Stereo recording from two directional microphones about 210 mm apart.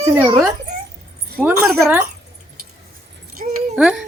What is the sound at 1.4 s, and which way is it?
Speech, centre (ahead or behind).